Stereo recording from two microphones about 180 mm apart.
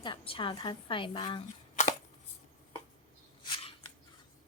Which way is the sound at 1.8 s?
40° left (ahead or behind).